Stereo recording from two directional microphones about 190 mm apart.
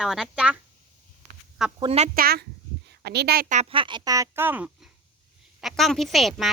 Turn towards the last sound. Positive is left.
turn(degrees=0)  # may be behind; listen again after turning